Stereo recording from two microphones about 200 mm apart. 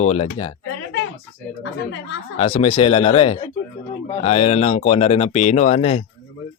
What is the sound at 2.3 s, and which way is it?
Speech, 30° left (ahead or behind).